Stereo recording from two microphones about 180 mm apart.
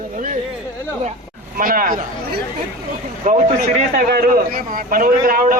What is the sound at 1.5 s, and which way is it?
A man's voice, 50° right (ahead or behind).